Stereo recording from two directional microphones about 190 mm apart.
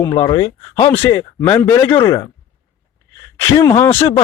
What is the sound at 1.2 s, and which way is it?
Speech, 15° left (ahead or behind).